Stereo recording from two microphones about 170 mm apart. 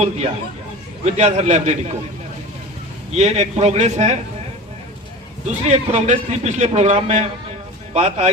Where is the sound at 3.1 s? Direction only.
40° right (ahead or behind).